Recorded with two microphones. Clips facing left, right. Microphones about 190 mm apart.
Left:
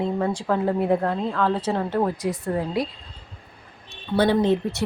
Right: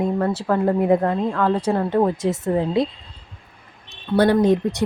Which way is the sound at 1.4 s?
10° right (ahead or behind).